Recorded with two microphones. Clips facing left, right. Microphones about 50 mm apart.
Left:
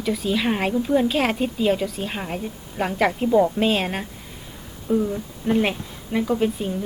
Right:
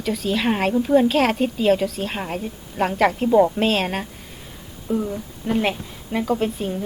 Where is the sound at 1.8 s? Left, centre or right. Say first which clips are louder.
Right 2 dB; centre.